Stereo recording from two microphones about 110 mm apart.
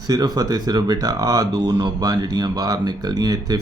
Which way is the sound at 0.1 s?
35° right (ahead or behind).